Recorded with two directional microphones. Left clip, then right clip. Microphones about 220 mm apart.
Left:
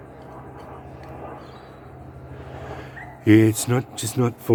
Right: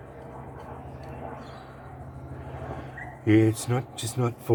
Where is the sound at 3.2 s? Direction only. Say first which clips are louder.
Left 6 dB; 50° left (ahead or behind).